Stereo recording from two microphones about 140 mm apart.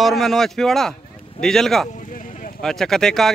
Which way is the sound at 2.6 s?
5° left (ahead or behind).